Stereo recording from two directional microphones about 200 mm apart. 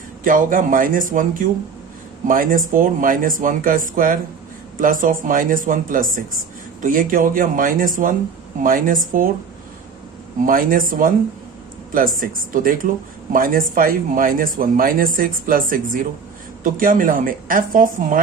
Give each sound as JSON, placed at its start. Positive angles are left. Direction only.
{"t": 0.3, "sound": "speech", "side_deg": -40}
{"t": 10.4, "sound": "speech", "side_deg": -45}